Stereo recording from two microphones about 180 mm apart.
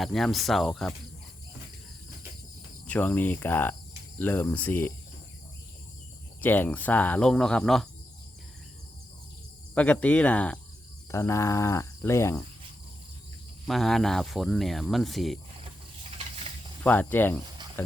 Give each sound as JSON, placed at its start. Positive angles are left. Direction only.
{"t": 0.0, "sound": "speech", "side_deg": 0}
{"t": 2.8, "sound": "speech", "side_deg": 10}
{"t": 6.4, "sound": "speech", "side_deg": 10}
{"t": 9.7, "sound": "speech", "side_deg": 5}
{"t": 13.7, "sound": "speech", "side_deg": 0}
{"t": 16.8, "sound": "speech", "side_deg": 10}